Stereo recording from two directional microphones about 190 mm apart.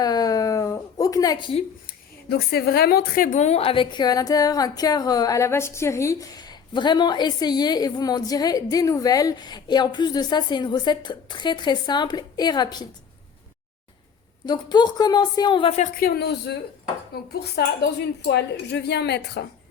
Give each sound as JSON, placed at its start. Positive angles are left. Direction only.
{"t": 0.0, "sound": "a sound", "side_deg": 20}
{"t": 2.3, "sound": "a woman's voice", "side_deg": 55}
{"t": 14.4, "sound": "a woman's voice", "side_deg": 20}
{"t": 16.0, "sound": "speech", "side_deg": 55}